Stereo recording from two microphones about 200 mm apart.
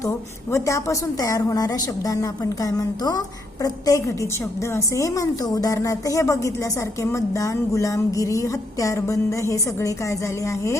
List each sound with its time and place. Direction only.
0.0 s a woman's voice: 15° left (ahead or behind)